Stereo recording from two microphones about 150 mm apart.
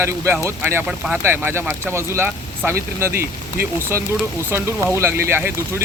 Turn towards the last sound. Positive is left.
turn(degrees=-15)  # may be behind; listen again after turning